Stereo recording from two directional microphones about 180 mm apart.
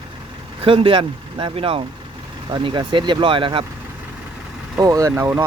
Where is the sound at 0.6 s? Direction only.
30° right (ahead or behind).